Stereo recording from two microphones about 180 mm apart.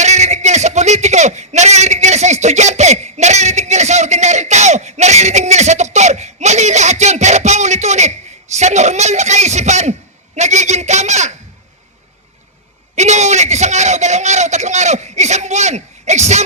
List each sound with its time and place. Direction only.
0.0 s a man's voice: 40° right (ahead or behind)
13.0 s a man's voice: 40° right (ahead or behind)